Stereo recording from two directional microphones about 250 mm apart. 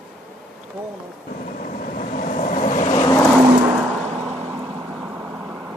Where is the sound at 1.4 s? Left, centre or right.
Left.